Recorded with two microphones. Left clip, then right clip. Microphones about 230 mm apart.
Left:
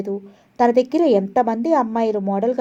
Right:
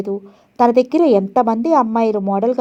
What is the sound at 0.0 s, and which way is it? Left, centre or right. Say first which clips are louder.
A woman's voice: right 3 dB; right.